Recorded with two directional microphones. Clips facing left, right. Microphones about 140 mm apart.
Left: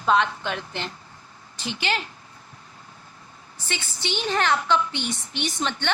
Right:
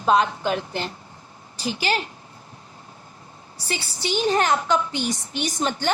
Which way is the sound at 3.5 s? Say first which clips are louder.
Right 3 dB; 35° right (ahead or behind).